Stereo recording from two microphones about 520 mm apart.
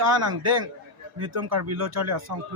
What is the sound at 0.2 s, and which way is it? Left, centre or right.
A man's voice, right.